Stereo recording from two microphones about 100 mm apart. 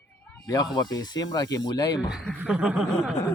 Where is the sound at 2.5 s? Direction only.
5° right (ahead or behind).